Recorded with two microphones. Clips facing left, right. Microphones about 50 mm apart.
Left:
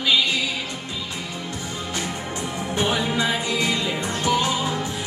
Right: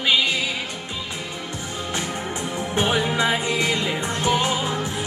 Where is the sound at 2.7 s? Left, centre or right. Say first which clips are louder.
Right 1 dB; right.